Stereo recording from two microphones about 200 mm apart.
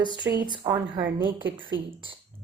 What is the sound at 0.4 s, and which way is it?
Speech, 20° right (ahead or behind).